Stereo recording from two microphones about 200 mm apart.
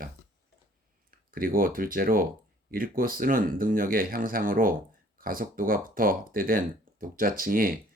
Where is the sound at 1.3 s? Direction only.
45° right (ahead or behind).